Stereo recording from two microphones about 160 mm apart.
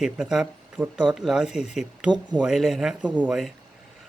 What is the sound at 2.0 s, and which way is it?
Speech, 25° right (ahead or behind).